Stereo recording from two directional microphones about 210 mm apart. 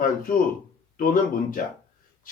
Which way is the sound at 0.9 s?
40° left (ahead or behind).